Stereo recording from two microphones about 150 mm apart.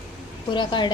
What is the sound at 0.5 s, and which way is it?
Speech, 30° left (ahead or behind).